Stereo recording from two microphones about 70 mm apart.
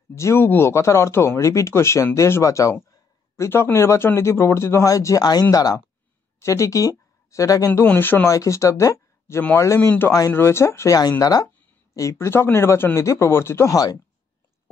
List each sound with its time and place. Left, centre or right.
0.2 s speech: left
3.4 s speech: left
5.2 s speech: left
6.4 s speech: left
7.8 s speech: left
8.3 s speech: left
9.8 s speech: left
11.0 s speech: left
11.9 s speech: left
12.3 s speech: left